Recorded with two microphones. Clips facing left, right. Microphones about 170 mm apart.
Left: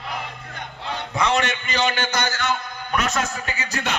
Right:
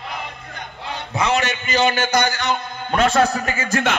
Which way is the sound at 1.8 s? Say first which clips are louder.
Right 5 dB; 10° right (ahead or behind).